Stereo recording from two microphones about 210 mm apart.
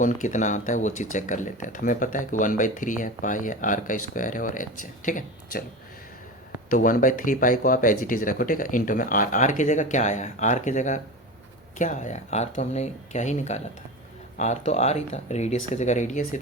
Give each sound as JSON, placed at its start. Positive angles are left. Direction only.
{"t": 0.0, "sound": "speech", "side_deg": 35}
{"t": 6.7, "sound": "speech", "side_deg": 40}